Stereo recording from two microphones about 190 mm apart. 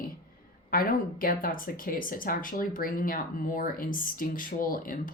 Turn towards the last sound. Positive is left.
turn(degrees=45)  # may be behind; listen again after turning